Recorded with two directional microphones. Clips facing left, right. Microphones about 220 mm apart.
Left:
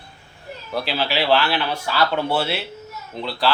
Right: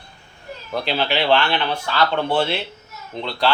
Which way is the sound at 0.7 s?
5° left (ahead or behind).